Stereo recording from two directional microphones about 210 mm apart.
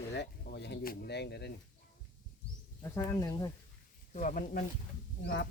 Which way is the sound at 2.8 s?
15° left (ahead or behind).